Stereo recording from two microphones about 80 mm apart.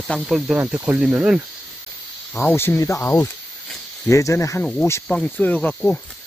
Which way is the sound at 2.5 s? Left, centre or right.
Left.